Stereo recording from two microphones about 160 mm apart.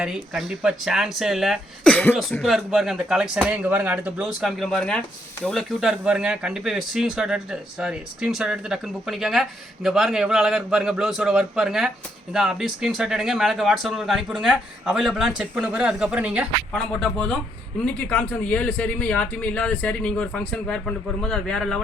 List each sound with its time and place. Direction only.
0.0 s speech: 5° right (ahead or behind)
2.4 s speech: centre (ahead or behind)
16.7 s speech: 5° left (ahead or behind)